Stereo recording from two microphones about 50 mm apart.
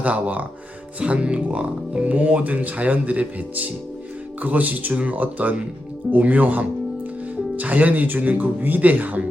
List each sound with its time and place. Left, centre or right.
0.0 s speech: right